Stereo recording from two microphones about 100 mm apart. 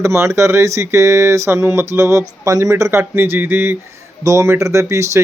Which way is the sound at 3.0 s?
20° right (ahead or behind).